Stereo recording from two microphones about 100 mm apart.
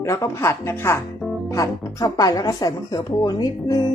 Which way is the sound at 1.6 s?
35° left (ahead or behind).